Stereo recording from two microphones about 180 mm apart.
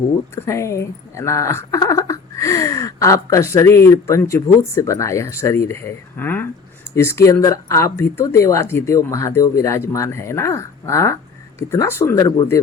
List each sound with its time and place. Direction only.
0.3 s speech: 15° left (ahead or behind)